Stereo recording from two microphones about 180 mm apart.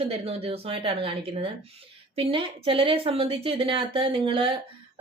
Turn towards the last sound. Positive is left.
turn(degrees=-30)  # may be behind; listen again after turning